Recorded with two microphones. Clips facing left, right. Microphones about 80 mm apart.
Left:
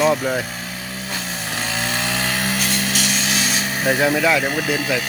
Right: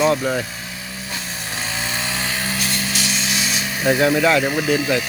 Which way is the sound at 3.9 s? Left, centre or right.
Centre.